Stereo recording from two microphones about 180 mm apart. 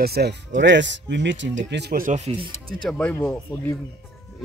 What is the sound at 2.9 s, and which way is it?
Speech, 10° left (ahead or behind).